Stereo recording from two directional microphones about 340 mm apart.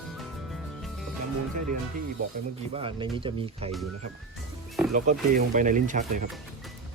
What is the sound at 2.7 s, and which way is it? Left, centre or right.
Speech, centre.